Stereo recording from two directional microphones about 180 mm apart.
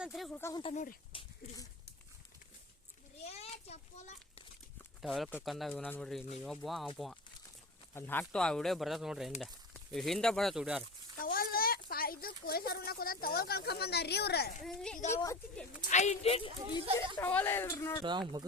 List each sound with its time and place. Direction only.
0.0 s speech: centre (ahead or behind)
0.3 s speech: 15° left (ahead or behind)
0.6 s speech: 40° left (ahead or behind)
1.1 s a sound: 30° left (ahead or behind)
3.2 s a sound: 35° left (ahead or behind)
5.0 s speech: centre (ahead or behind)
11.2 s a child's voice: 55° left (ahead or behind)
14.6 s speech: centre (ahead or behind)
15.1 s speech: 15° left (ahead or behind)
15.9 s speech: 40° left (ahead or behind)
17.2 s speech: 10° left (ahead or behind)
18.0 s speech: 25° right (ahead or behind)